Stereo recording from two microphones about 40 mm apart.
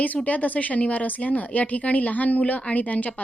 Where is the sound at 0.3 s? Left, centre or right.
Left.